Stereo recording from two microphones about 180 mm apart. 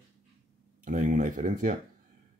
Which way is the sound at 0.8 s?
45° right (ahead or behind).